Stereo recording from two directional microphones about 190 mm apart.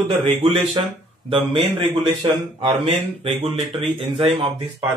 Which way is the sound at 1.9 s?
25° right (ahead or behind).